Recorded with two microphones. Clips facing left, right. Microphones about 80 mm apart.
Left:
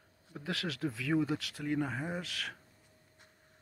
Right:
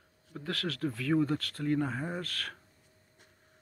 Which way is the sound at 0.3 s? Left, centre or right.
Centre.